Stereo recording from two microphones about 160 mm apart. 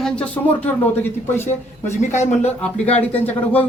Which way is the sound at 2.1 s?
45° left (ahead or behind).